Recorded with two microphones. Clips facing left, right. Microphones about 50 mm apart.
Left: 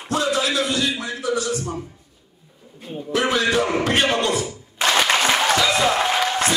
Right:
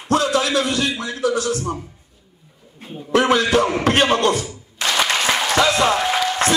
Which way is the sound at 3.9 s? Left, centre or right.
Right.